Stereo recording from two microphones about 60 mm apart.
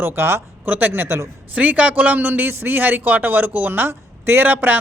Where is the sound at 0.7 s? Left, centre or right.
Right.